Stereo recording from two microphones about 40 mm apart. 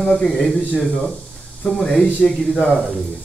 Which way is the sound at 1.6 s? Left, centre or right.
Centre.